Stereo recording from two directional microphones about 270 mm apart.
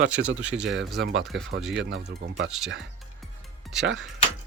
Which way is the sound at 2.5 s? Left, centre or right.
Centre.